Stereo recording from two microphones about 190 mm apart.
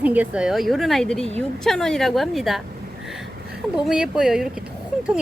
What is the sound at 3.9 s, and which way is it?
Speech, 5° right (ahead or behind).